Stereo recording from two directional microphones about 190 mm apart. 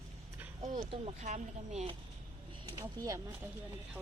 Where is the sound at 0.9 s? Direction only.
35° right (ahead or behind).